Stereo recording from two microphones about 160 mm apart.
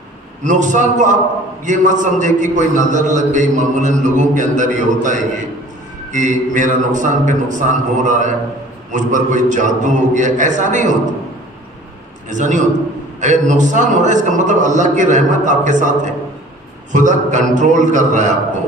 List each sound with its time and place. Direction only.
0.4 s a man's voice: 50° right (ahead or behind)
12.3 s a man's voice: 50° right (ahead or behind)
16.9 s a man's voice: 50° right (ahead or behind)